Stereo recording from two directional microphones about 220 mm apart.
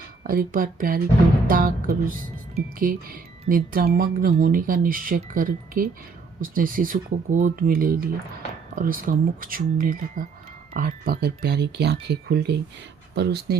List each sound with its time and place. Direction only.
0.3 s speech: 40° right (ahead or behind)